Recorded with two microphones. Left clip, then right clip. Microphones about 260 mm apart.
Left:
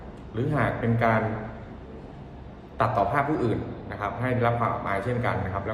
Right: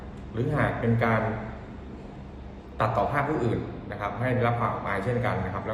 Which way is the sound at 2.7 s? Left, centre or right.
Centre.